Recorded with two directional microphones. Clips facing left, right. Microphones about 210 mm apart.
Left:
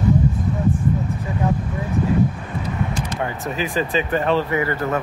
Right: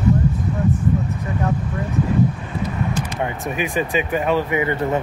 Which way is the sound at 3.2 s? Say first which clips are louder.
Right 1 dB; 15° right (ahead or behind).